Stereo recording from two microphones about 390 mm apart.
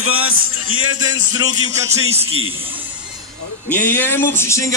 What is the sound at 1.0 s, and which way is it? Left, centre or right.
Speech, centre.